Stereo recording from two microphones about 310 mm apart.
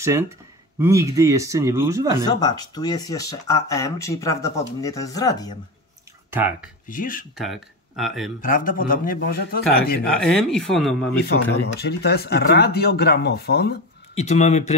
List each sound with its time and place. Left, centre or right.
0.7 s speech: centre
2.2 s speech: centre
6.3 s speech: centre
6.9 s a man's voice: left
7.3 s speech: centre
8.4 s a man's voice: left
10.2 s speech: centre
11.1 s speech: left
14.1 s a man's voice: left